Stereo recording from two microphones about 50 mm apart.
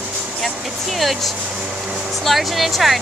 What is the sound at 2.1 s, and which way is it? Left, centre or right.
Speech, centre.